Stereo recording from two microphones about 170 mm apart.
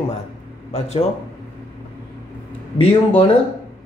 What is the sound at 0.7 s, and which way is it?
Speech, 40° left (ahead or behind).